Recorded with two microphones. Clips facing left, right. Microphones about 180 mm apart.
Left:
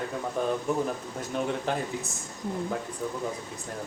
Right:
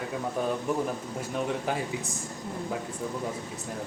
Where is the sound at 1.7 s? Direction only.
10° right (ahead or behind).